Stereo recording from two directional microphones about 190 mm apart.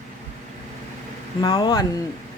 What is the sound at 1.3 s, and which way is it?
Speech, 25° left (ahead or behind).